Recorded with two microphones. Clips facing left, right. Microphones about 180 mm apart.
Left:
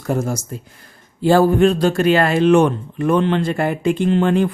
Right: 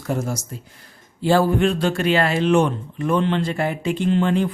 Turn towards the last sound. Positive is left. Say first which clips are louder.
# left 3 dB
turn(degrees=55)  # may be behind; listen again after turning